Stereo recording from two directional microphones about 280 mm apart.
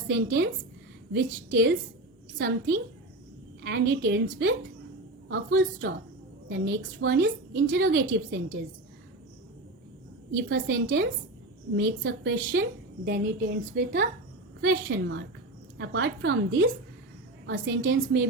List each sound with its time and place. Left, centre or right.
0.1 s a woman's voice: right
3.6 s a woman's voice: right
10.5 s a woman's voice: right